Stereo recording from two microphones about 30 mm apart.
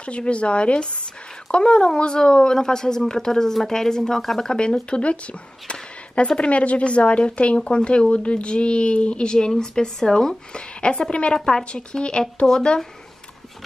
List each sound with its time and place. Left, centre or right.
0.2 s a woman's voice: left
6.5 s speech: left
9.9 s a woman's voice: centre
10.6 s speech: left
11.3 s a woman's voice: left